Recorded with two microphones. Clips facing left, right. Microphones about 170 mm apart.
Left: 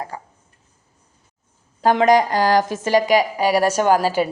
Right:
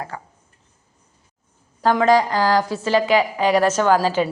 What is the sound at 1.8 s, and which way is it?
A woman's voice, 20° left (ahead or behind).